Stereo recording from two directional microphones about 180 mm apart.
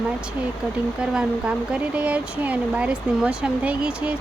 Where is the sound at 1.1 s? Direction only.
5° right (ahead or behind).